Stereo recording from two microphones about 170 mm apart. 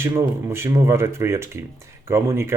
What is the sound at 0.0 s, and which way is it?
Speech, 15° right (ahead or behind).